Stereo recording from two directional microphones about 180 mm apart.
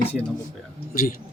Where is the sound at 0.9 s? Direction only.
50° left (ahead or behind).